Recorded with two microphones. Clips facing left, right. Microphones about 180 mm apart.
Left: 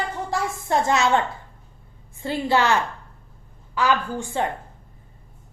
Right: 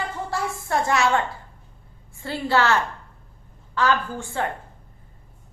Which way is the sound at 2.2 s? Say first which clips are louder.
Left 1 dB; 15° left (ahead or behind).